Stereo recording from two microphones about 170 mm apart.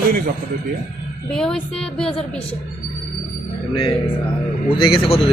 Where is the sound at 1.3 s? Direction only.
5° left (ahead or behind).